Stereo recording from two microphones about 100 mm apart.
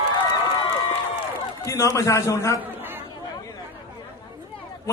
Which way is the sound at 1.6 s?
35° left (ahead or behind).